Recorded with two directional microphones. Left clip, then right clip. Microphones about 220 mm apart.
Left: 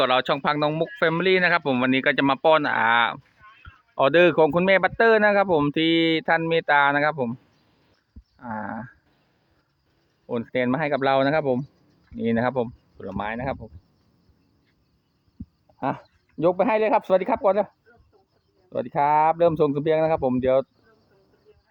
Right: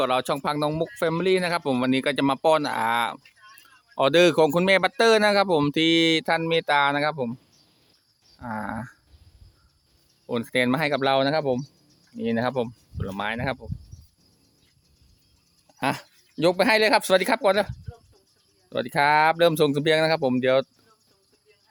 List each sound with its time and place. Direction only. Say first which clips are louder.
0.0 s speech: left 3 dB; 5° right (ahead or behind)
8.4 s speech: even; 10° right (ahead or behind)
10.2 s speech: right 1 dB; 10° right (ahead or behind)
15.8 s speech: right 1 dB; 10° right (ahead or behind)
18.7 s speech: even; 15° right (ahead or behind)